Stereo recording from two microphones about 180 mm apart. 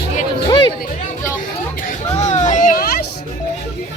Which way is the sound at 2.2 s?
40° left (ahead or behind).